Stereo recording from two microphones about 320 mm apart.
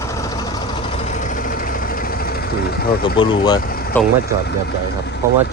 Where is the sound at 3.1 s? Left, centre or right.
Centre.